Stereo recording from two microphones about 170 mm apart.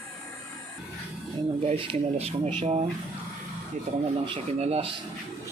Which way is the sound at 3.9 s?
40° right (ahead or behind).